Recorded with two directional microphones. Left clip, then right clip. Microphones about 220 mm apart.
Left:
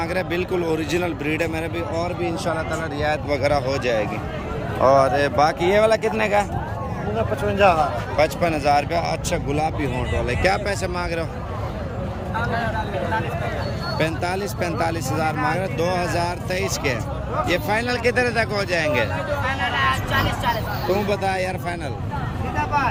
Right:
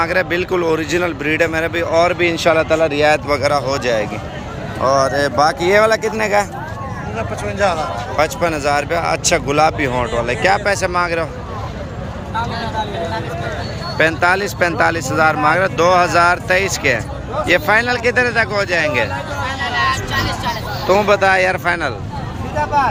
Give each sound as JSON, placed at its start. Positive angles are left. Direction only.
{"t": 0.0, "sound": "speech", "side_deg": 5}
{"t": 2.5, "sound": "speech", "side_deg": -40}
{"t": 3.2, "sound": "speech", "side_deg": 5}
{"t": 7.2, "sound": "speech", "side_deg": 45}
{"t": 8.1, "sound": "speech", "side_deg": 5}
{"t": 14.0, "sound": "speech", "side_deg": 0}
{"t": 21.1, "sound": "speech", "side_deg": 0}